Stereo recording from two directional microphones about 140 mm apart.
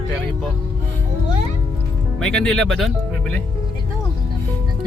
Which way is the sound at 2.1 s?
5° left (ahead or behind).